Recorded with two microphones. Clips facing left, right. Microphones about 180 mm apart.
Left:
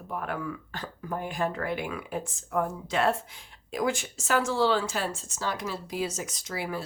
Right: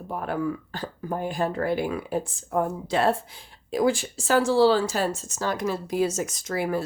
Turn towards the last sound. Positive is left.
turn(degrees=-50)  # may be behind; listen again after turning